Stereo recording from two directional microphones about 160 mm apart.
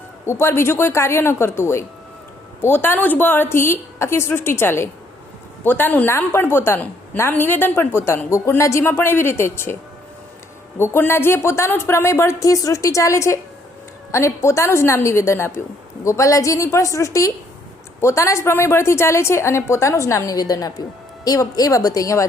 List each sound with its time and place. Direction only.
0.3 s a woman's voice: 15° left (ahead or behind)
10.8 s a woman's voice: 15° left (ahead or behind)